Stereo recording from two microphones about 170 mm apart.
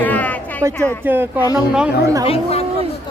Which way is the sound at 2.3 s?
35° left (ahead or behind).